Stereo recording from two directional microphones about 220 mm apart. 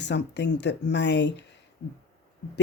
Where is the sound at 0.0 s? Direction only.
50° left (ahead or behind).